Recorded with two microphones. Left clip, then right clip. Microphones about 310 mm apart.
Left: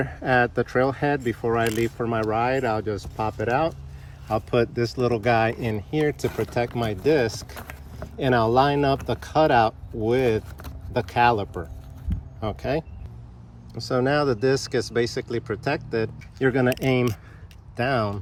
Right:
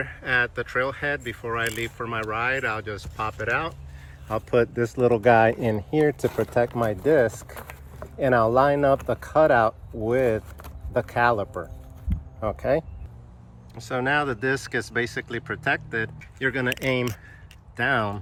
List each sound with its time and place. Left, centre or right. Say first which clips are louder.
0.0 s speech: left 2 dB; centre